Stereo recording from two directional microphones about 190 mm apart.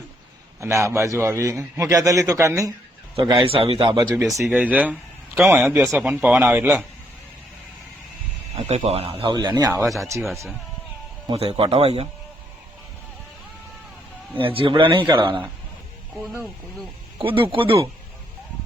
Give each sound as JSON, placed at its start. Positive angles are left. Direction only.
{"t": 0.6, "sound": "a man's voice", "side_deg": -15}
{"t": 3.4, "sound": "a man's voice", "side_deg": -30}
{"t": 8.5, "sound": "a man's voice", "side_deg": -35}
{"t": 11.3, "sound": "speech", "side_deg": -30}
{"t": 14.3, "sound": "a man's voice", "side_deg": -30}
{"t": 17.2, "sound": "a man's voice", "side_deg": -25}